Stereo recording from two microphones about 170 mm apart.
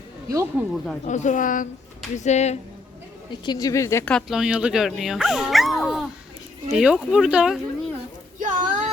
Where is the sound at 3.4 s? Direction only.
25° left (ahead or behind).